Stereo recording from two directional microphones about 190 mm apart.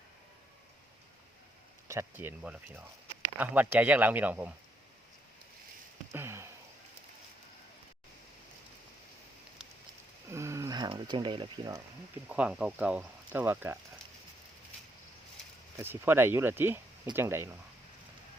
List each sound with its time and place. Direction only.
1.9 s speech: 15° right (ahead or behind)
6.1 s a sound: 15° right (ahead or behind)
10.3 s speech: 15° right (ahead or behind)
12.3 s speech: 5° right (ahead or behind)
15.8 s speech: 10° right (ahead or behind)